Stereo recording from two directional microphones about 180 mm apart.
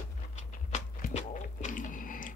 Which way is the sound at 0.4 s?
40° left (ahead or behind).